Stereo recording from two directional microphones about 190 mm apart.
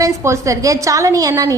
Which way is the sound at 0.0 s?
15° right (ahead or behind).